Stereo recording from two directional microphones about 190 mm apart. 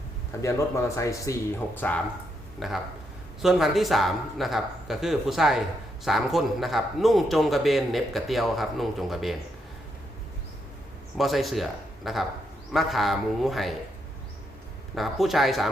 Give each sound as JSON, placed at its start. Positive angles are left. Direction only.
{"t": 0.4, "sound": "speech", "side_deg": 15}
{"t": 2.6, "sound": "a man's voice", "side_deg": 0}
{"t": 11.2, "sound": "a man's voice", "side_deg": 0}
{"t": 14.9, "sound": "a man's voice", "side_deg": 0}